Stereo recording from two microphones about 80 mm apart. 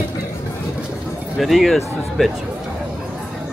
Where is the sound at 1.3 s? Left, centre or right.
Centre.